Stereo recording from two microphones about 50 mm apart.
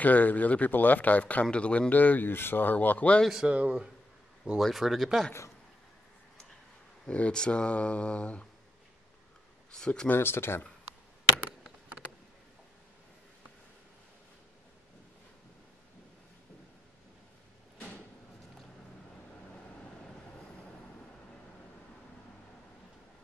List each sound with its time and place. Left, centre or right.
0.0 s speech: left
3.4 s speech: right
4.6 s speech: centre
7.1 s speech: left
9.7 s speech: centre
10.0 s speech: left
17.7 s a sound: left